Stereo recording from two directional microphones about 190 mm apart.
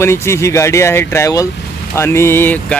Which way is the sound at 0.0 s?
15° left (ahead or behind).